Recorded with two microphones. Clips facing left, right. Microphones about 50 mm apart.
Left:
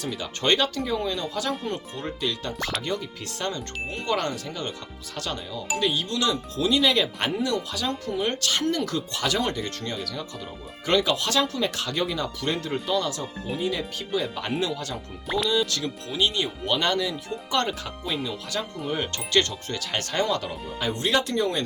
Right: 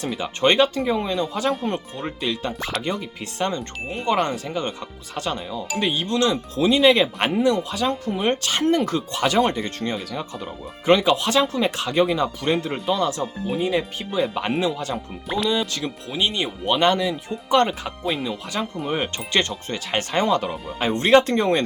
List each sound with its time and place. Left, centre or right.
0.2 s speech: right
18.0 s speech: centre
18.5 s speech: right
20.7 s speech: right